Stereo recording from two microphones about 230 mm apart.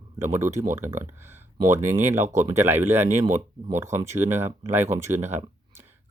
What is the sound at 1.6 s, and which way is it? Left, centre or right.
Speech, right.